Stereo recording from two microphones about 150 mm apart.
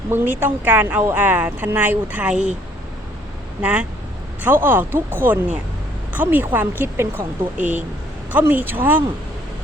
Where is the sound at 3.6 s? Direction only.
10° right (ahead or behind).